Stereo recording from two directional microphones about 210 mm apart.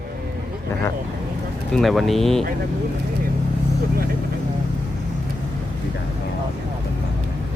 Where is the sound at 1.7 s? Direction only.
Centre (ahead or behind).